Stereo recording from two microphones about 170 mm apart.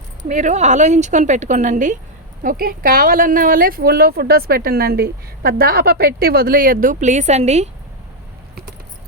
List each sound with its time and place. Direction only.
0.2 s a woman's voice: 45° right (ahead or behind)
2.4 s speech: 55° right (ahead or behind); by 7.7 s 40° right (ahead or behind)